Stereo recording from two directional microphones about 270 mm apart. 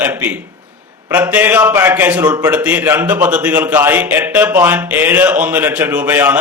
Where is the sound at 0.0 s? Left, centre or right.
Centre.